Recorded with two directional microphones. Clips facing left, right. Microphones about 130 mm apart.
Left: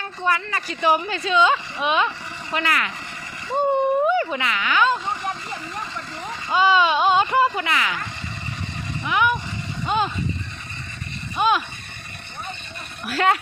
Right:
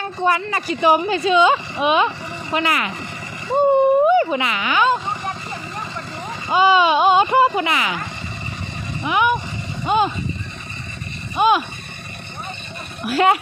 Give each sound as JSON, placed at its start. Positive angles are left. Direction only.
{"t": 0.0, "sound": "speech", "side_deg": -20}
{"t": 0.8, "sound": "speech", "side_deg": -10}
{"t": 4.0, "sound": "speech", "side_deg": -10}
{"t": 6.5, "sound": "speech", "side_deg": -10}
{"t": 9.0, "sound": "speech", "side_deg": -10}
{"t": 11.3, "sound": "speech", "side_deg": -10}
{"t": 13.1, "sound": "speech", "side_deg": -10}